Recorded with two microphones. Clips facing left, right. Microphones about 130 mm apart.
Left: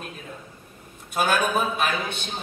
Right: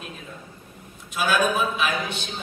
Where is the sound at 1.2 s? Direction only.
50° left (ahead or behind).